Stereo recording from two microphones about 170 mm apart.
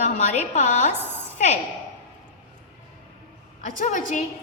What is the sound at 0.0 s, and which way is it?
Speech, 45° left (ahead or behind).